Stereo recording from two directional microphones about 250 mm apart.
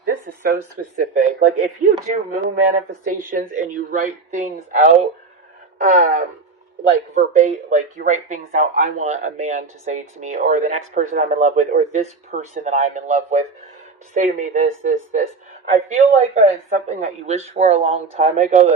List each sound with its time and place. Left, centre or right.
0.0 s speech: right
2.3 s speech: right